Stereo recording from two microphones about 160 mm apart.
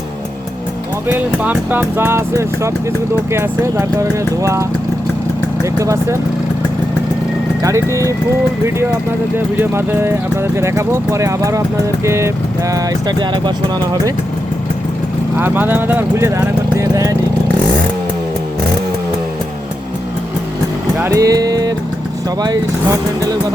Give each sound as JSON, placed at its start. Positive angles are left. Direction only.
{"t": 1.0, "sound": "speech", "side_deg": -10}
{"t": 5.6, "sound": "speech", "side_deg": -20}
{"t": 7.6, "sound": "speech", "side_deg": -20}
{"t": 9.6, "sound": "speech", "side_deg": -15}
{"t": 15.4, "sound": "speech", "side_deg": -15}
{"t": 21.0, "sound": "speech", "side_deg": -20}